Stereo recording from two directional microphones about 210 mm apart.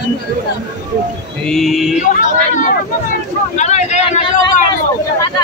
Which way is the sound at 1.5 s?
Centre (ahead or behind).